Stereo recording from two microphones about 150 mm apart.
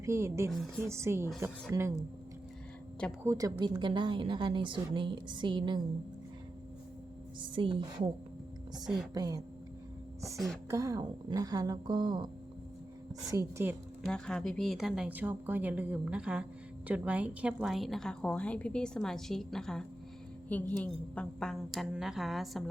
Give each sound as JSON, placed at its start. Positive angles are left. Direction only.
{"t": 0.0, "sound": "a woman's voice", "side_deg": -20}
{"t": 0.5, "sound": "a woman's voice", "side_deg": 5}
{"t": 0.9, "sound": "a woman's voice", "side_deg": -20}
{"t": 3.2, "sound": "a woman's voice", "side_deg": -20}
{"t": 7.5, "sound": "a woman's voice", "side_deg": -35}
{"t": 9.1, "sound": "a woman's voice", "side_deg": -25}
{"t": 10.3, "sound": "a woman's voice", "side_deg": 0}
{"t": 10.7, "sound": "a woman's voice", "side_deg": -20}
{"t": 13.2, "sound": "a woman's voice", "side_deg": -20}
{"t": 14.0, "sound": "a woman's voice", "side_deg": 5}